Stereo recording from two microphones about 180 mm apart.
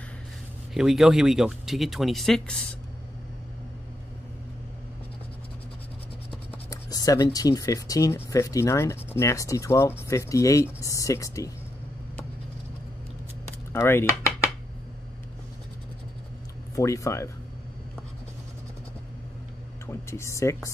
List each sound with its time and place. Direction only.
0.7 s speech: centre (ahead or behind)
6.5 s speech: 20° left (ahead or behind)
13.7 s speech: 15° left (ahead or behind)
16.7 s speech: 15° left (ahead or behind)
19.9 s speech: 15° left (ahead or behind)